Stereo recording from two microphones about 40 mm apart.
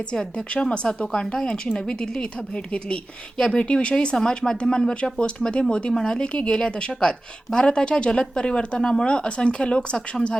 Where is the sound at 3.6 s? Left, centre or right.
Left.